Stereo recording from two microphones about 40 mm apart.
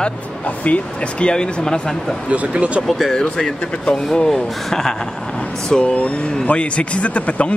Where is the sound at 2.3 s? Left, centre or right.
Right.